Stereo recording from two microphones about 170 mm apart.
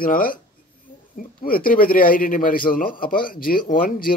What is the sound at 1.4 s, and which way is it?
Speech, 55° left (ahead or behind).